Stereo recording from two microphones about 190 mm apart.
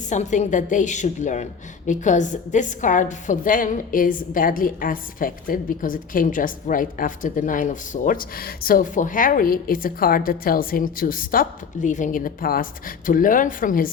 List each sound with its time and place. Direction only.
0.1 s a woman's voice: 40° left (ahead or behind)